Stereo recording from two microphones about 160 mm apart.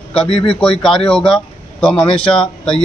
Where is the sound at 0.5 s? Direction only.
5° left (ahead or behind).